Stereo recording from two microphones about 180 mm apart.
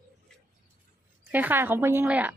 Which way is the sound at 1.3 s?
10° right (ahead or behind).